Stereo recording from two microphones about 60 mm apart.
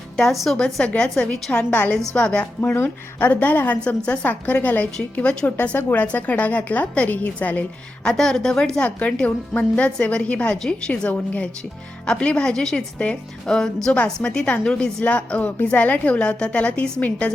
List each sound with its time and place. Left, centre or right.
0.2 s a woman's voice: centre
0.6 s a woman's voice: centre
1.5 s a woman's voice: left
2.6 s a woman's voice: left
8.1 s a woman's voice: centre
8.8 s a woman's voice: left